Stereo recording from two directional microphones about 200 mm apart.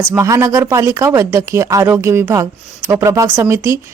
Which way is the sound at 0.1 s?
15° right (ahead or behind).